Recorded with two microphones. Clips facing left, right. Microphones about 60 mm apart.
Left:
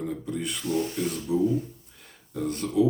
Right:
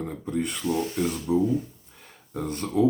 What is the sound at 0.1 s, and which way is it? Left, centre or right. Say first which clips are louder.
Speech: right 2 dB; right.